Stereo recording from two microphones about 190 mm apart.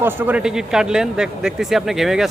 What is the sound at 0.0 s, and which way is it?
Speech, 10° right (ahead or behind).